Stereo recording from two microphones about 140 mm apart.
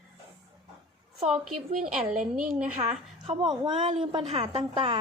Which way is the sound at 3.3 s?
35° right (ahead or behind).